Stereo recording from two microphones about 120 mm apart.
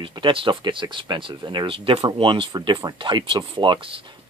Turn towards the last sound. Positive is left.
turn(degrees=-45)  # may be behind; listen again after turning